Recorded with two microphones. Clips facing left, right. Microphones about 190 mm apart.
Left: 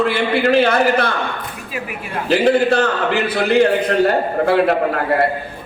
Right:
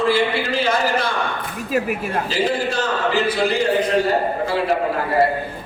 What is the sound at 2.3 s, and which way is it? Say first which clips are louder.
A man's voice: left 10 dB; 60° left (ahead or behind).